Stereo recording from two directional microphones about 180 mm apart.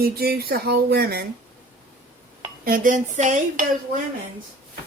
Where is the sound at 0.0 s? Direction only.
60° right (ahead or behind).